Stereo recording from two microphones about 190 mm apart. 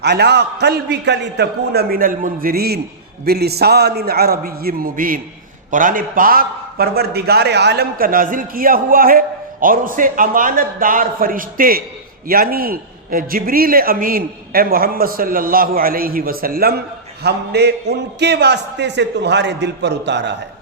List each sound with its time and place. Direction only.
0.0 s a man's voice: 60° right (ahead or behind)